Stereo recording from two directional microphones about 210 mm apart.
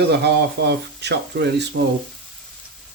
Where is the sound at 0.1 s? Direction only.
50° right (ahead or behind).